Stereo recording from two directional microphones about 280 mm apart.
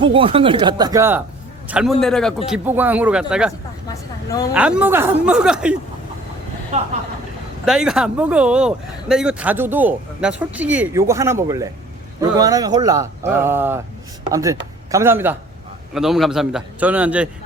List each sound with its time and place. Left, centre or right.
0.0 s speech: centre
3.8 s a woman's voice: centre
4.5 s speech: centre
7.6 s speech: centre